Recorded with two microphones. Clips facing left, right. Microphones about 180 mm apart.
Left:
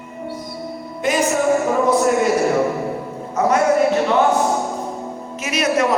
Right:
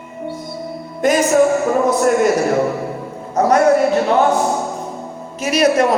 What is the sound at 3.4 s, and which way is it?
Music, 40° right (ahead or behind).